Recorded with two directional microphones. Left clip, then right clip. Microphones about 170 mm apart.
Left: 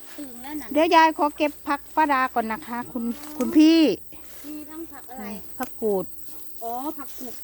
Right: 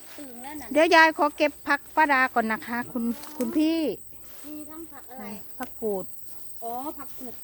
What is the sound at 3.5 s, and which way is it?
Speech, 30° left (ahead or behind).